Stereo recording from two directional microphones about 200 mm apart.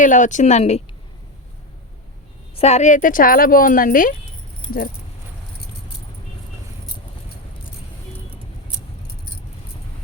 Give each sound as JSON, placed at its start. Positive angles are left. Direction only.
{"t": 0.0, "sound": "a woman's voice", "side_deg": 40}
{"t": 2.6, "sound": "speech", "side_deg": 35}